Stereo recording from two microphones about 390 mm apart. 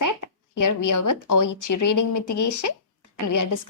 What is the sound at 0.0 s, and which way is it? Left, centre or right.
A woman's voice, left.